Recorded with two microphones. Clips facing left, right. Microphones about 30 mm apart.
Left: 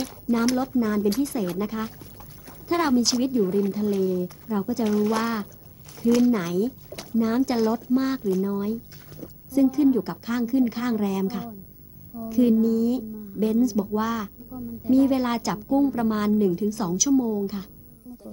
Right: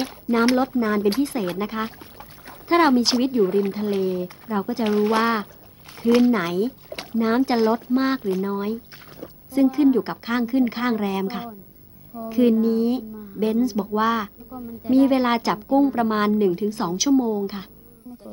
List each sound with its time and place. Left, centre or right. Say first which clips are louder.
0.0 s a woman's voice: right 3 dB; right